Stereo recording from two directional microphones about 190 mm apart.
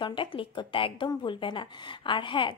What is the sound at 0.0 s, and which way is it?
Speech, 25° left (ahead or behind).